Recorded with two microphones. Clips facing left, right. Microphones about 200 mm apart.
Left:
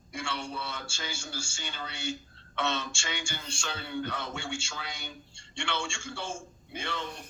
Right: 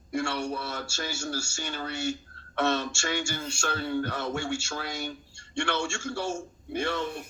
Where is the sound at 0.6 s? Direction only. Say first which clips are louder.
Right 5 dB; 45° right (ahead or behind).